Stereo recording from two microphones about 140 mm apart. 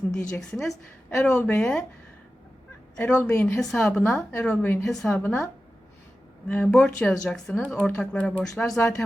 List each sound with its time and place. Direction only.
0.3 s a woman's voice: 5° left (ahead or behind)
1.3 s speech: 15° left (ahead or behind)
2.9 s speech: 10° left (ahead or behind)
4.8 s speech: centre (ahead or behind)
6.5 s speech: 10° left (ahead or behind)